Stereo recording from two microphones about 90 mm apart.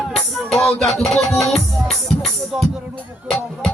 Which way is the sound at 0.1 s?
5° left (ahead or behind).